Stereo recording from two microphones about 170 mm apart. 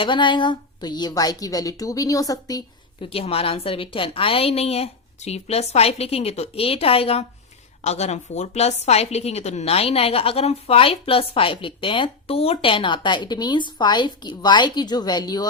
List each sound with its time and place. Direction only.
0.0 s a woman's voice: 30° left (ahead or behind)
3.1 s a woman's voice: 35° left (ahead or behind)